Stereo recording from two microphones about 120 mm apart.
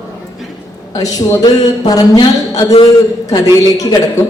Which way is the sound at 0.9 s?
30° left (ahead or behind).